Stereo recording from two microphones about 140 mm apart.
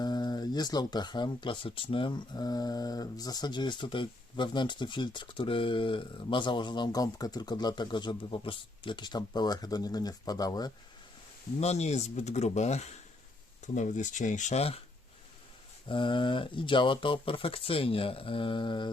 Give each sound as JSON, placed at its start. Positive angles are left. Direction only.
{"t": 0.0, "sound": "speech", "side_deg": 30}
{"t": 11.6, "sound": "speech", "side_deg": 50}
{"t": 15.9, "sound": "speech", "side_deg": 35}